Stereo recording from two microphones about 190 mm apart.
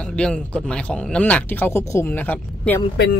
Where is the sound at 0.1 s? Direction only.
5° left (ahead or behind).